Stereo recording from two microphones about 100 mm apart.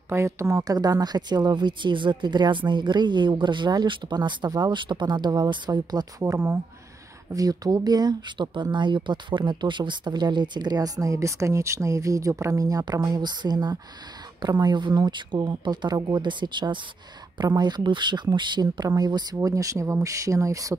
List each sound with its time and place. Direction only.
0.1 s speech: 30° right (ahead or behind)
6.2 s speech: 25° right (ahead or behind)
7.3 s speech: 40° right (ahead or behind)